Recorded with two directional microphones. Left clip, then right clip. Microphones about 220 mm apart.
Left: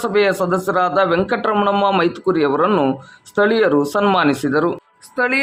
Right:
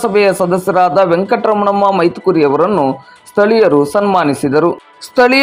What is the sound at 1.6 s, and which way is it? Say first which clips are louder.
Speech: right 4 dB; centre (ahead or behind).